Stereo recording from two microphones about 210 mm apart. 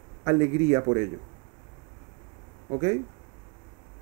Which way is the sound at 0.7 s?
20° right (ahead or behind).